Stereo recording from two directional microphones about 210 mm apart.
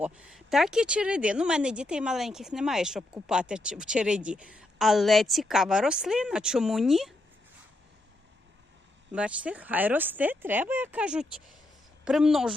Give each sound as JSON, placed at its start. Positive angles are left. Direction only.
{"t": 0.0, "sound": "speech", "side_deg": -5}
{"t": 9.1, "sound": "speech", "side_deg": -5}